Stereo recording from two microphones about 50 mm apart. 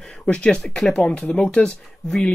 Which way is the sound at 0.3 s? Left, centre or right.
Centre.